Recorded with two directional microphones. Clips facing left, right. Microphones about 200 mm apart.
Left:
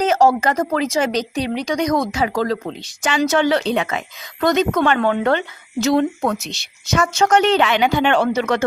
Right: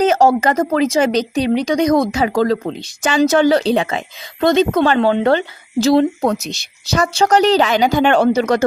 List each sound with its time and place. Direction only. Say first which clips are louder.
0.3 s speech: right 3 dB; 20° right (ahead or behind); by 8.6 s 40° right (ahead or behind)